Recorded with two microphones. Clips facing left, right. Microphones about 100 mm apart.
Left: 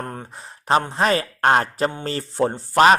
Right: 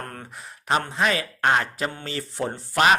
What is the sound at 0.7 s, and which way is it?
Speech, 35° left (ahead or behind).